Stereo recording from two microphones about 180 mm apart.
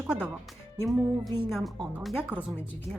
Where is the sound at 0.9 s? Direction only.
Centre (ahead or behind).